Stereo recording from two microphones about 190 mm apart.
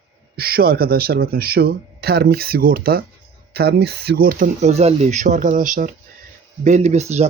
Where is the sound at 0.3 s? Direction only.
55° right (ahead or behind).